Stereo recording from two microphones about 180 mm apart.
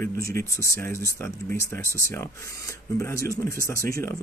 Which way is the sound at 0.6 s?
15° left (ahead or behind).